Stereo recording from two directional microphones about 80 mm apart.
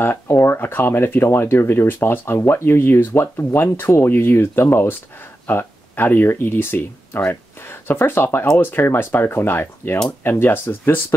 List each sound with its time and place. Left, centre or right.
0.0 s speech: left